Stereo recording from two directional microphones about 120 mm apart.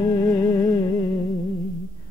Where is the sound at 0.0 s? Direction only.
30° left (ahead or behind).